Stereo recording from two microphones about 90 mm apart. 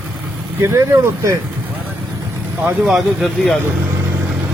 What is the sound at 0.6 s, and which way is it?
Speech, 30° right (ahead or behind).